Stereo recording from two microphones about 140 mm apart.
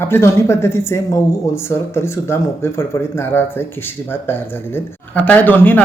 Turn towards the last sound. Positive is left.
turn(degrees=10)  # may be behind; listen again after turning